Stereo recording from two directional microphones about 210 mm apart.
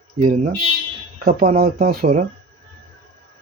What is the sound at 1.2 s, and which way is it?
Speech, 40° right (ahead or behind).